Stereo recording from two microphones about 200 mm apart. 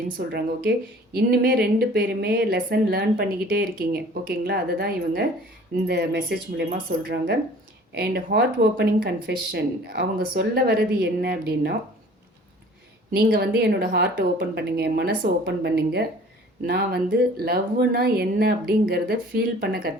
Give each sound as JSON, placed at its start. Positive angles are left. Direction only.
{"t": 0.3, "sound": "speech", "side_deg": -50}
{"t": 13.1, "sound": "speech", "side_deg": -50}